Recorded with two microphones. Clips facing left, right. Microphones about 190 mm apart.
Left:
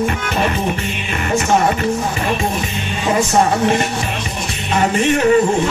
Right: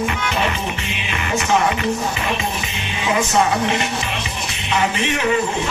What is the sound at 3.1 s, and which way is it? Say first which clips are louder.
Music: left 3 dB; 45° left (ahead or behind).